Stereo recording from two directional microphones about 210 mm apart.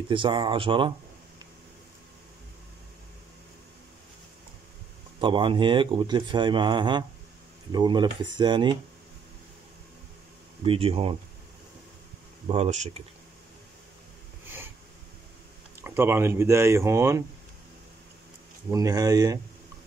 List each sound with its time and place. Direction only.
0.1 s speech: 25° right (ahead or behind)
5.2 s speech: 25° right (ahead or behind)
10.6 s speech: 25° right (ahead or behind)
12.4 s speech: 30° right (ahead or behind)
15.8 s speech: 10° right (ahead or behind)
18.7 s speech: 15° right (ahead or behind)